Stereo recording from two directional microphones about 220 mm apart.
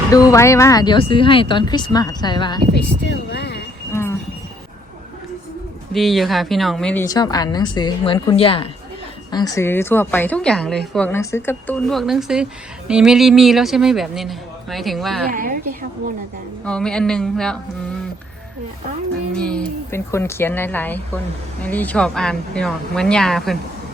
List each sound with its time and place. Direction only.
0.1 s speech: 15° left (ahead or behind)
3.1 s speech: 50° left (ahead or behind)
5.9 s a woman's voice: centre (ahead or behind)
15.3 s a woman's voice: 40° right (ahead or behind)
16.6 s a man's voice: 5° left (ahead or behind)
19.4 s a woman's voice: 5° left (ahead or behind)